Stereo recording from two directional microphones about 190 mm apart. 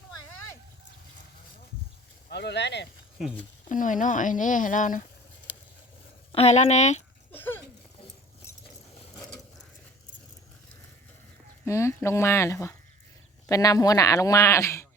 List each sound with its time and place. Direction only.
2.3 s speech: 60° left (ahead or behind)
3.7 s speech: 45° left (ahead or behind)
6.3 s speech: 35° left (ahead or behind)
7.3 s a sound: 10° left (ahead or behind)
11.6 s speech: 15° left (ahead or behind)